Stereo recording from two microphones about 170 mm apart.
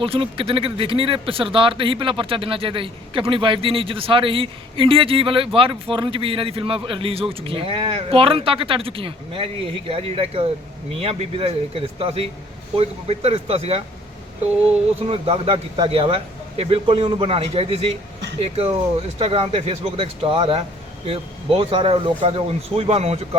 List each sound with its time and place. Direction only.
0.0 s speech: 30° right (ahead or behind)
15.0 s speech: 35° right (ahead or behind)